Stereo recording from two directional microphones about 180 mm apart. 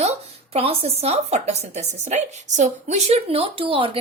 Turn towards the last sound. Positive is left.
turn(degrees=-30)  # may be behind; listen again after turning